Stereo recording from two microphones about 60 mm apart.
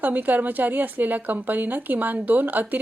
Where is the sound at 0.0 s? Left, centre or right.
Right.